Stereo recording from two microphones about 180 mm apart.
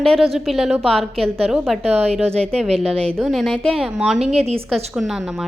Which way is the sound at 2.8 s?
35° right (ahead or behind).